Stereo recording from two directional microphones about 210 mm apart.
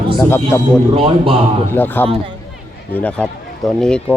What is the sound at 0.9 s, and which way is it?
Speech, 25° right (ahead or behind).